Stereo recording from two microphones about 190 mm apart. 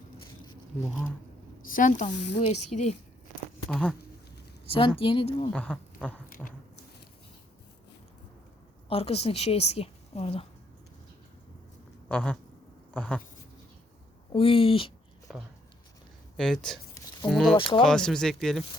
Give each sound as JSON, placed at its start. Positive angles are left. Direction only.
{"t": 1.7, "sound": "a woman's voice", "side_deg": 45}
{"t": 3.7, "sound": "speech", "side_deg": 5}
{"t": 4.6, "sound": "speech", "side_deg": 30}
{"t": 5.5, "sound": "speech", "side_deg": 5}
{"t": 8.9, "sound": "a woman's voice", "side_deg": 30}
{"t": 12.0, "sound": "a sound", "side_deg": 5}
{"t": 12.9, "sound": "speech", "side_deg": 5}
{"t": 14.3, "sound": "speech", "side_deg": 30}
{"t": 15.3, "sound": "speech", "side_deg": 0}
{"t": 17.6, "sound": "speech", "side_deg": 25}
{"t": 17.8, "sound": "speech", "side_deg": 5}